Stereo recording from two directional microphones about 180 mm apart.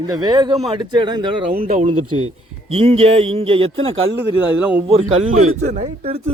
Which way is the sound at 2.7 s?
30° right (ahead or behind).